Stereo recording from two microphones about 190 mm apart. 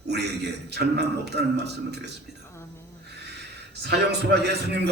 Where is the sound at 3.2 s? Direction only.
60° right (ahead or behind).